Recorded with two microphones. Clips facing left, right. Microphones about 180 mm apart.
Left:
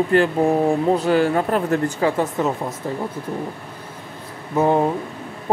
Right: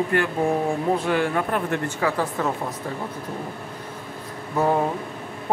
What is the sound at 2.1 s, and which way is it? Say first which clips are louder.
Speech: left 4 dB; 20° left (ahead or behind).